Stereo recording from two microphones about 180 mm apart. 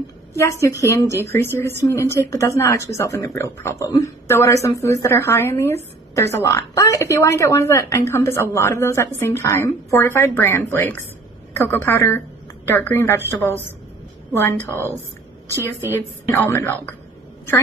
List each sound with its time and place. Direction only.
0.4 s speech: 15° left (ahead or behind)
15.9 s speech: 10° left (ahead or behind)